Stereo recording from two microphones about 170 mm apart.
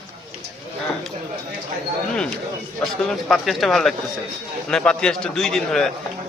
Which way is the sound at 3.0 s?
Centre (ahead or behind).